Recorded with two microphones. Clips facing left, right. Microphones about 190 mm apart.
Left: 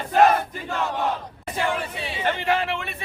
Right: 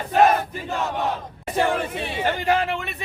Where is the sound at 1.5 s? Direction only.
55° right (ahead or behind).